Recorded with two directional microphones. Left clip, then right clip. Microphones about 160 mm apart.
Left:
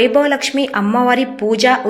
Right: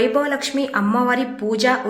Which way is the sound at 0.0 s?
20° left (ahead or behind).